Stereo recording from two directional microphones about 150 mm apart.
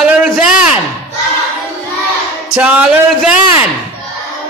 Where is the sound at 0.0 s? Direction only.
5° right (ahead or behind).